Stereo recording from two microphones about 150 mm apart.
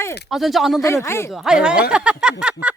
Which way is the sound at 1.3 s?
Centre (ahead or behind).